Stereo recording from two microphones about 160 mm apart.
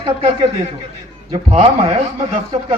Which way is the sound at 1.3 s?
35° right (ahead or behind).